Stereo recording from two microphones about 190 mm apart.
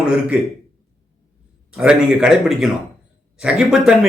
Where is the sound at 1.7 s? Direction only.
5° right (ahead or behind).